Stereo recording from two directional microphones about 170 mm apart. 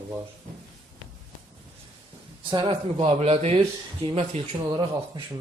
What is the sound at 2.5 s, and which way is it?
Speech, 25° right (ahead or behind).